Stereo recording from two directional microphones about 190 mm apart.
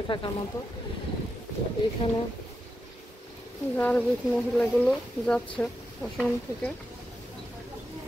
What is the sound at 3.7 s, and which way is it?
Speech, 5° left (ahead or behind).